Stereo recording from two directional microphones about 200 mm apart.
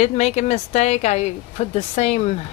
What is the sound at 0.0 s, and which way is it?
Speech, 35° left (ahead or behind).